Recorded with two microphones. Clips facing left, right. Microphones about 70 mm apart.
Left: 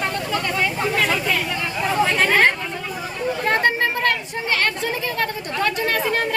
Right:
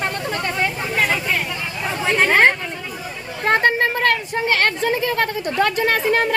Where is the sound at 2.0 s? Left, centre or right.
Right.